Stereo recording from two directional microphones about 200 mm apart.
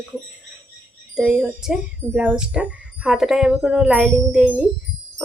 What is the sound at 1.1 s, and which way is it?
Speech, centre (ahead or behind).